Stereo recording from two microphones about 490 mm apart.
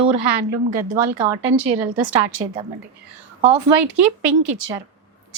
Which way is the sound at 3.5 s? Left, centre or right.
Right.